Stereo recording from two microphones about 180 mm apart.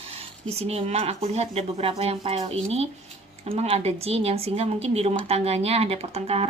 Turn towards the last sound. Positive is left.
turn(degrees=-35)  # may be behind; listen again after turning